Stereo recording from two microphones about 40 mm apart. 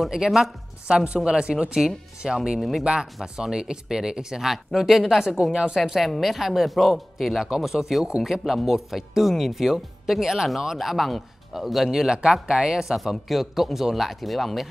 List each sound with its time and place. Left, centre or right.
0.8 s speech: right; by 5.5 s centre
5.5 s speech: right
6.2 s a man's voice: centre
12.1 s a man's voice: right; by 14.7 s centre